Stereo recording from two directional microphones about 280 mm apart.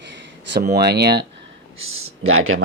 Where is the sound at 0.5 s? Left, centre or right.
Right.